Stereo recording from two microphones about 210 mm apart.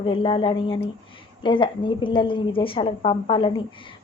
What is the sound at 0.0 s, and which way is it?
A woman's voice, 25° left (ahead or behind).